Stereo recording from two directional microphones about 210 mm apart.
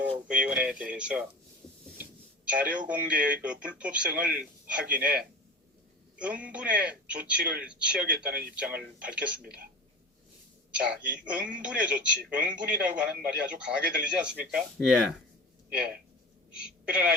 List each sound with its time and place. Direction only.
0.0 s speech: 5° right (ahead or behind)
6.1 s a man's voice: 5° right (ahead or behind)
8.3 s speech: 45° right (ahead or behind)
8.8 s a man's voice: 5° right (ahead or behind)
10.7 s a man's voice: 5° right (ahead or behind)
16.5 s a woman's voice: 5° right (ahead or behind)